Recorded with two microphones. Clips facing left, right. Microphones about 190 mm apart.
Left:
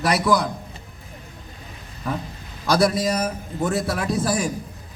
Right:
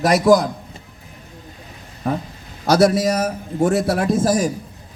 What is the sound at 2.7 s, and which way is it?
Speech, 70° right (ahead or behind).